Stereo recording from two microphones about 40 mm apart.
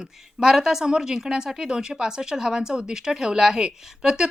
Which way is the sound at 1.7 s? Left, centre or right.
Centre.